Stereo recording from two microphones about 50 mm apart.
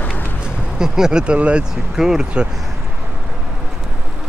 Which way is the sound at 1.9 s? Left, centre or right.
Centre.